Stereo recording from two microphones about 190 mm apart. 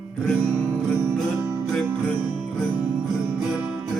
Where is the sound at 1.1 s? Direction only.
15° right (ahead or behind).